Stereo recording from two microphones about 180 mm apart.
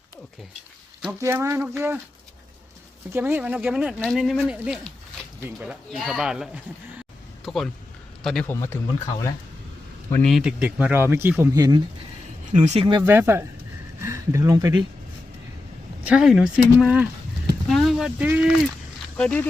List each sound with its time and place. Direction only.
1.2 s speech: 15° right (ahead or behind)
3.1 s speech: 10° right (ahead or behind)
8.6 s speech: 15° left (ahead or behind)
10.1 s speech: 5° left (ahead or behind); by 11.8 s 20° right (ahead or behind)
12.6 s speech: 30° right (ahead or behind)
13.0 s speech: 10° right (ahead or behind)
16.0 s speech: 5° right (ahead or behind)